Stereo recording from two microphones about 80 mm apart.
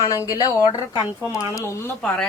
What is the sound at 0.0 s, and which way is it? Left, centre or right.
Speech, left.